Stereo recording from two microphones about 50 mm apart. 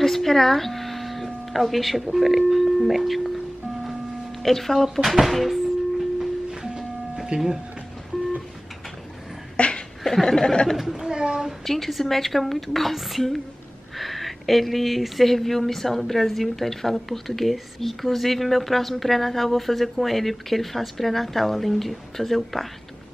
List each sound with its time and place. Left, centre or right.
0.0 s a sound: centre
4.4 s speech: centre
6.5 s music: centre
7.2 s speech: centre
9.6 s a sound: left
10.0 s speech: centre
10.8 s a child's voice: centre
11.6 s speech: centre